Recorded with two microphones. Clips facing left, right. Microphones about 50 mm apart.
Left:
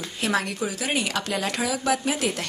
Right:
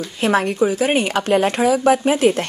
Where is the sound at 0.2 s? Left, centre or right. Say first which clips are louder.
Right 9 dB; right.